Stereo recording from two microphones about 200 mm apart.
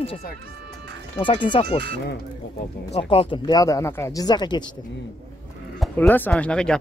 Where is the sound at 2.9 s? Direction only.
30° left (ahead or behind).